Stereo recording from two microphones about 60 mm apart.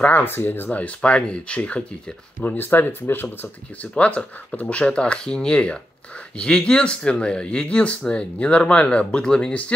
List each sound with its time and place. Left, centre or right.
0.2 s speech: left
0.7 s speech: left
2.4 s speech: left
3.8 s speech: left